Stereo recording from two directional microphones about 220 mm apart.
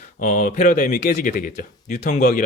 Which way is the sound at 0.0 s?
35° left (ahead or behind).